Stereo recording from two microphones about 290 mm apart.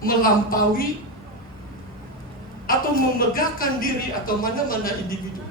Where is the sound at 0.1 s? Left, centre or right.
Left.